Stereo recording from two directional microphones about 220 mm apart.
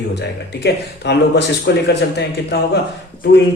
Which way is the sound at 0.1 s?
50° left (ahead or behind).